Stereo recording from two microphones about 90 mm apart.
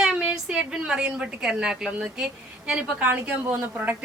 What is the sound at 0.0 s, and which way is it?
A woman's voice, 5° right (ahead or behind).